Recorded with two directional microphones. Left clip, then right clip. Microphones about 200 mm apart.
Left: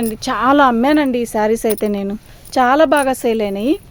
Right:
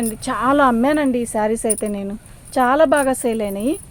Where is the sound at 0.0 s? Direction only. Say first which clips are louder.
Left 4 dB; 50° left (ahead or behind).